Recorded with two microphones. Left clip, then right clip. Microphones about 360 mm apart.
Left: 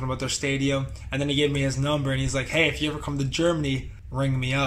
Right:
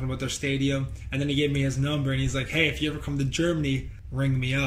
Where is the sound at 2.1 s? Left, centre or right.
Centre.